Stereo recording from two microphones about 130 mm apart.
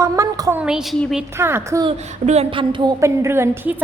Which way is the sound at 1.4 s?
20° right (ahead or behind).